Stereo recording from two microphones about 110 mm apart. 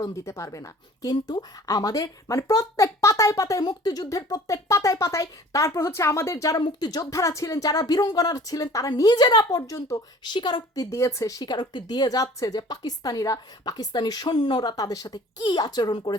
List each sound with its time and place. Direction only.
0.0 s speech: 30° left (ahead or behind)
6.6 s speech: 40° left (ahead or behind)
10.3 s speech: 40° left (ahead or behind)
10.9 s speech: 30° left (ahead or behind)